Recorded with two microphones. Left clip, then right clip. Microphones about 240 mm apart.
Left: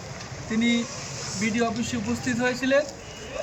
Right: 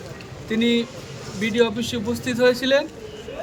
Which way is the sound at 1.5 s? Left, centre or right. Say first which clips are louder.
Right 9 dB; centre.